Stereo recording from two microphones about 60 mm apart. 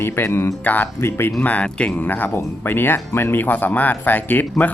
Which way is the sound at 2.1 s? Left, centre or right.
Left.